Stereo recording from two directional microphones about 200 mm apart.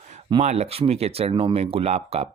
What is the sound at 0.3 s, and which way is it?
A man's voice, 30° right (ahead or behind).